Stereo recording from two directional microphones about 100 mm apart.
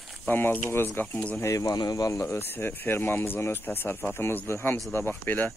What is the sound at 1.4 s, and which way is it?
Speech, 30° left (ahead or behind).